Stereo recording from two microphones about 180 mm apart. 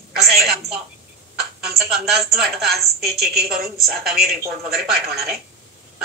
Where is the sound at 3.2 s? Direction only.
60° right (ahead or behind).